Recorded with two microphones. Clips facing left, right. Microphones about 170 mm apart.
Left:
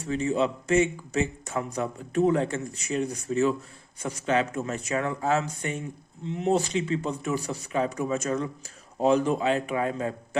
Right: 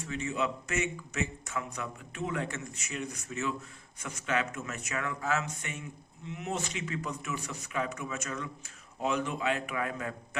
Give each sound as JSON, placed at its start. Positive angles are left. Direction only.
{"t": 0.0, "sound": "a man's voice", "side_deg": 35}